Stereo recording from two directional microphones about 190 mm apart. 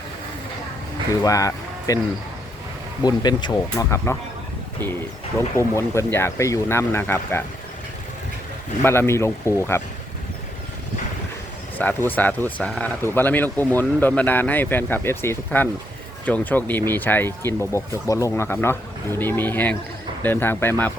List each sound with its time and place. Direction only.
1.2 s speech: 15° left (ahead or behind)
3.0 s speech: 20° left (ahead or behind)
5.5 s speech: 15° left (ahead or behind)
8.8 s speech: 10° left (ahead or behind)
11.8 s speech: 10° left (ahead or behind)